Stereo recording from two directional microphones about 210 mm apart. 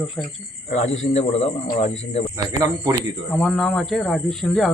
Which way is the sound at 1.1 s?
30° left (ahead or behind).